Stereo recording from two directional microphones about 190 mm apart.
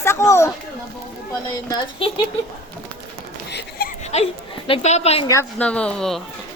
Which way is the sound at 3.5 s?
55° left (ahead or behind).